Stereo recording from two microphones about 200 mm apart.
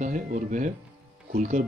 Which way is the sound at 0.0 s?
40° right (ahead or behind).